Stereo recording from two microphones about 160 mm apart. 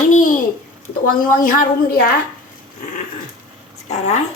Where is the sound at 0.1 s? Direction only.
55° left (ahead or behind).